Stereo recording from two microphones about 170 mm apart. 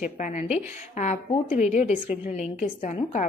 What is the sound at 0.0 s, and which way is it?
Speech, 45° left (ahead or behind).